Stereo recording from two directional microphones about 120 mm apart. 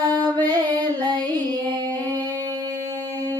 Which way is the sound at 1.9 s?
15° left (ahead or behind).